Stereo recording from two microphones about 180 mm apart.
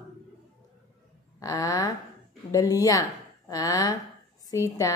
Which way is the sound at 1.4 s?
20° left (ahead or behind).